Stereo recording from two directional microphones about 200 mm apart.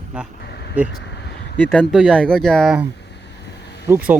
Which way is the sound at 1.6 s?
5° left (ahead or behind).